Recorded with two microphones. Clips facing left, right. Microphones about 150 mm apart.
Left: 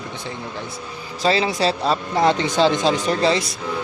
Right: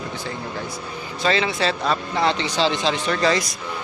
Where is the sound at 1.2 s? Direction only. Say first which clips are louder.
Left 2 dB; 35° left (ahead or behind).